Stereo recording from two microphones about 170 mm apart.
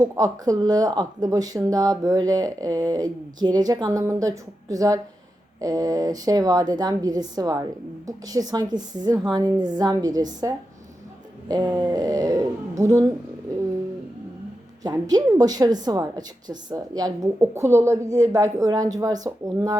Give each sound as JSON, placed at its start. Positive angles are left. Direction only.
{"t": 0.0, "sound": "speech", "side_deg": -20}
{"t": 11.4, "sound": "speech", "side_deg": -25}
{"t": 14.8, "sound": "speech", "side_deg": -25}